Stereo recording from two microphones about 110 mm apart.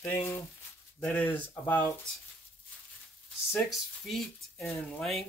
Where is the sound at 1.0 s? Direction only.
15° left (ahead or behind).